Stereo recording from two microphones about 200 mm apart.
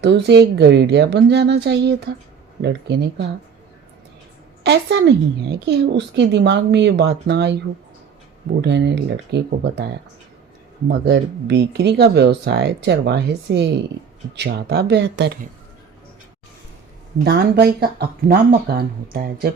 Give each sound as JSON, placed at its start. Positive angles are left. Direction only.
{"t": 0.0, "sound": "a woman's voice", "side_deg": -60}
{"t": 4.6, "sound": "a woman's voice", "side_deg": -55}
{"t": 8.6, "sound": "a woman's voice", "side_deg": -60}
{"t": 17.2, "sound": "speech", "side_deg": -55}